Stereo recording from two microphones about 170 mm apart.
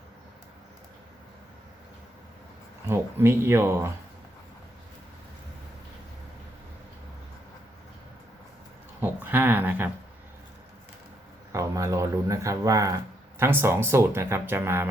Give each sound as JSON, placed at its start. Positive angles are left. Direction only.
{"t": 2.8, "sound": "speech", "side_deg": -15}
{"t": 9.0, "sound": "speech", "side_deg": -10}
{"t": 11.5, "sound": "speech", "side_deg": -20}